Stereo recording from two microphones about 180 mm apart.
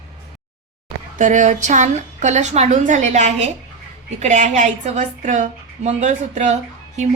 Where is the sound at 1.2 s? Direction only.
45° right (ahead or behind).